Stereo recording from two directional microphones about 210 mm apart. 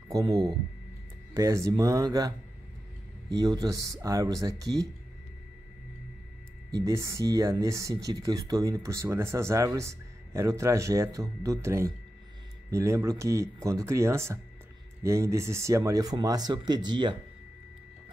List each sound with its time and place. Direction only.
0.1 s speech: 20° right (ahead or behind)
6.8 s speech: 15° right (ahead or behind)